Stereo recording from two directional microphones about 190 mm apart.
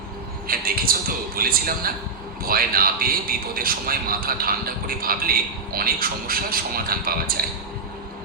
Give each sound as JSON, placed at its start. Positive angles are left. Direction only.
{"t": 0.4, "sound": "a man's voice", "side_deg": -50}